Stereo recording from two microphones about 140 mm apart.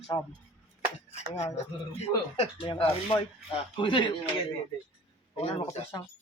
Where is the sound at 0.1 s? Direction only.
45° left (ahead or behind).